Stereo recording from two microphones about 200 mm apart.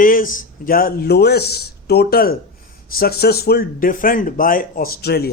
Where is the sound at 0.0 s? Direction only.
45° left (ahead or behind).